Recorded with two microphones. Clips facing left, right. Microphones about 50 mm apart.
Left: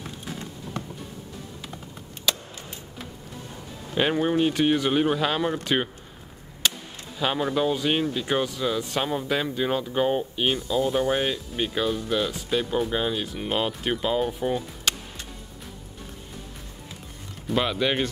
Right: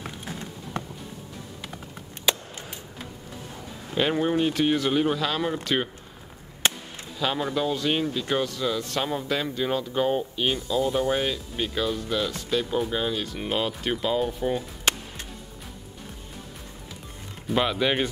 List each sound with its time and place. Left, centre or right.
4.1 s speech: centre
6.6 s chop: right
7.2 s speech: centre
17.5 s speech: centre